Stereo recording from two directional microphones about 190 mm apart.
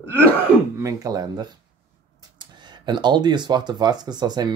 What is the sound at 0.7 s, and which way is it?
Speech, 20° right (ahead or behind).